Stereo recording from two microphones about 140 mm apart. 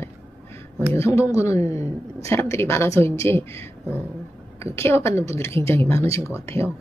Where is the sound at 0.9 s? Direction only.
20° left (ahead or behind).